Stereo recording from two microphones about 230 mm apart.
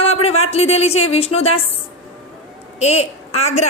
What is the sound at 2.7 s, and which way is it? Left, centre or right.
Speech, left.